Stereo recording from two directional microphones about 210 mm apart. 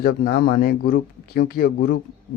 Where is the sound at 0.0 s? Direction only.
45° left (ahead or behind).